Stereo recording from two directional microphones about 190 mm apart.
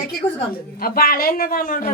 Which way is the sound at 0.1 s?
55° left (ahead or behind).